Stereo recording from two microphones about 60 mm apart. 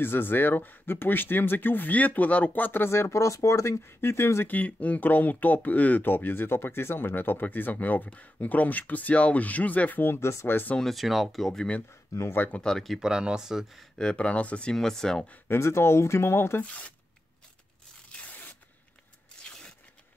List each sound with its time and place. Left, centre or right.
0.0 s speech: left
3.8 s speech: left
4.5 s speech: left
10.8 s speech: centre
12.1 s speech: left
12.6 s speech: centre
13.0 s speech: centre
13.9 s speech: centre
15.4 s speech: left
16.6 s speech: left